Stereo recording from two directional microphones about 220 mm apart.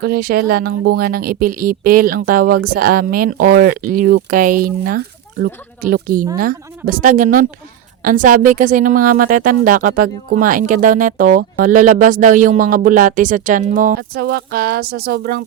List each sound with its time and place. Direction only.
0.0 s speech: 45° right (ahead or behind)